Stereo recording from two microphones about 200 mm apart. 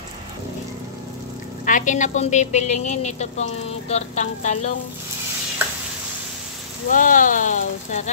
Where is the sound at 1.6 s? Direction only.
40° left (ahead or behind).